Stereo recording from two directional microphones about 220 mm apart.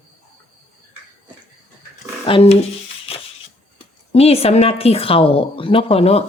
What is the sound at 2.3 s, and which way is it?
Speech, 25° left (ahead or behind).